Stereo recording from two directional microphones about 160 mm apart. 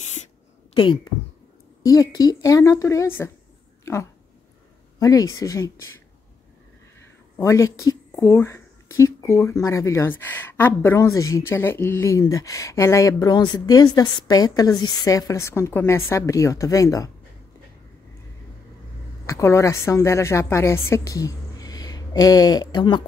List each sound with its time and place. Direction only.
0.7 s speech: 30° left (ahead or behind)
7.3 s speech: 20° left (ahead or behind)
19.2 s a woman's voice: 20° left (ahead or behind)